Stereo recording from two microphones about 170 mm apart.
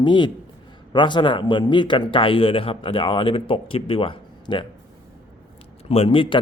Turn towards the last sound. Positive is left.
turn(degrees=30)  # may be behind; listen again after turning